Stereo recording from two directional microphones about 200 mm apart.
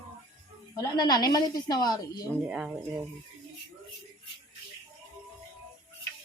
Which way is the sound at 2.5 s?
Centre (ahead or behind).